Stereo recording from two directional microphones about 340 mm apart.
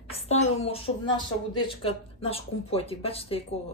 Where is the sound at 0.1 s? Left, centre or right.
Centre.